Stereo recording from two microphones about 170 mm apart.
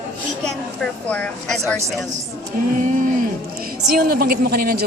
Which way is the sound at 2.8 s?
50° right (ahead or behind).